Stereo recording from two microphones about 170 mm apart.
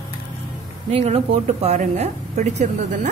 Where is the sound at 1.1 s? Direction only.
40° right (ahead or behind).